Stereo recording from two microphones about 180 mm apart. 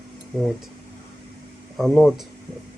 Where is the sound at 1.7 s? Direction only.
Centre (ahead or behind).